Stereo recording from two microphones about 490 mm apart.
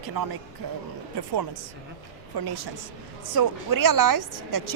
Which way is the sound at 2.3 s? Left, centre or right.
Right.